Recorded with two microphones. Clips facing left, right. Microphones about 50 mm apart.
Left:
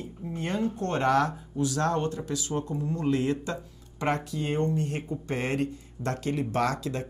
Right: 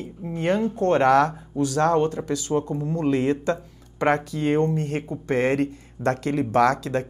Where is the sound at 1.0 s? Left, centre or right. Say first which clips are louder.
Right 4 dB; right.